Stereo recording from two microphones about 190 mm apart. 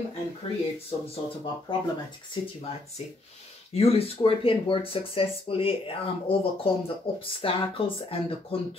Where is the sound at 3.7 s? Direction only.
30° left (ahead or behind).